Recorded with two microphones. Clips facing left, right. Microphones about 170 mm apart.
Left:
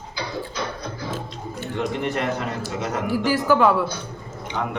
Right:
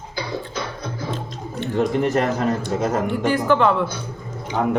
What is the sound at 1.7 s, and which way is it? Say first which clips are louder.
A man's voice: right 6 dB; 40° right (ahead or behind).